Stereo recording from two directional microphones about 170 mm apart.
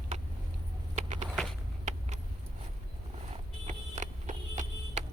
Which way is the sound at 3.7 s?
45° right (ahead or behind).